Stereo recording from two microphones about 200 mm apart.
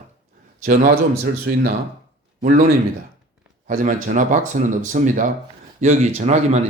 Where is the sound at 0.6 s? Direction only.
40° right (ahead or behind).